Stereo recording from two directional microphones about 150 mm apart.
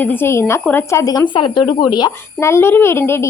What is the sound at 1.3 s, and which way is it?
A child's voice, 35° left (ahead or behind).